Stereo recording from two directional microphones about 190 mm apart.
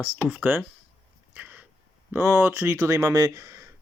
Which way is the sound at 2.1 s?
15° right (ahead or behind).